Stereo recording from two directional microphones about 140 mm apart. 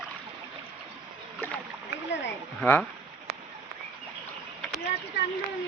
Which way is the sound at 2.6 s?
10° left (ahead or behind).